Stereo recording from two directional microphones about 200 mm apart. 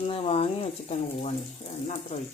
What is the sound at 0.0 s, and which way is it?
Speech, 30° left (ahead or behind).